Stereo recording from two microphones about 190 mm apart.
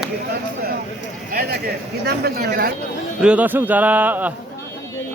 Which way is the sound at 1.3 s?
55° right (ahead or behind).